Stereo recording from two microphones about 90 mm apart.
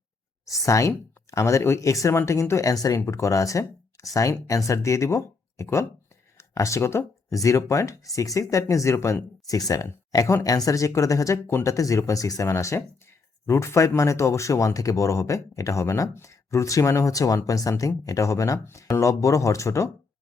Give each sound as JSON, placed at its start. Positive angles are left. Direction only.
{"t": 0.4, "sound": "speech", "side_deg": 35}